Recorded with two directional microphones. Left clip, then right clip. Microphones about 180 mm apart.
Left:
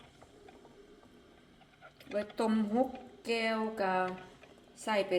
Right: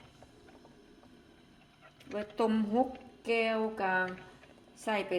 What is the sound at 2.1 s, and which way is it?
A woman's voice, 10° right (ahead or behind).